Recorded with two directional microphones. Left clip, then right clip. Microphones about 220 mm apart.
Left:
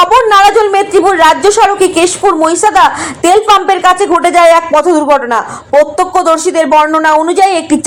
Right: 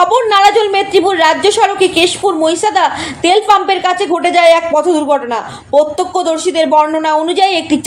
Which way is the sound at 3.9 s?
35° left (ahead or behind).